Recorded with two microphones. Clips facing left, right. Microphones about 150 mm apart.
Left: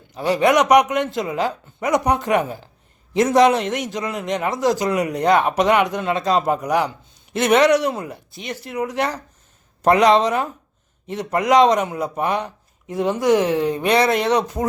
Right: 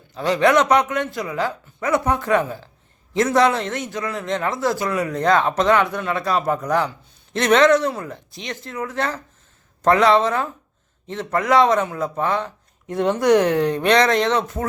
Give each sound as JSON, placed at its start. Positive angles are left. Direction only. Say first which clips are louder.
{"t": 0.1, "sound": "a man's voice", "louder": "even", "side_deg": 10}
{"t": 8.3, "sound": "speech", "louder": "left 1 dB", "side_deg": 5}
{"t": 8.6, "sound": "a man's voice", "louder": "left 3 dB", "side_deg": 15}
{"t": 12.9, "sound": "speech", "louder": "right 1 dB", "side_deg": 0}